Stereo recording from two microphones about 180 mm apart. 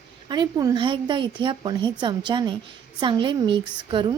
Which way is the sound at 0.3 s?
20° right (ahead or behind).